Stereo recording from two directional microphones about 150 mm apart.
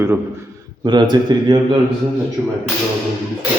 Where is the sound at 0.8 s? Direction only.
30° right (ahead or behind).